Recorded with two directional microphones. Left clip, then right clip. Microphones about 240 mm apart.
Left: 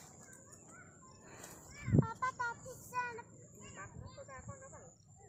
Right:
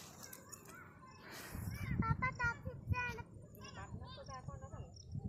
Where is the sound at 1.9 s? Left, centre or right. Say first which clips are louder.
Left 3 dB; right.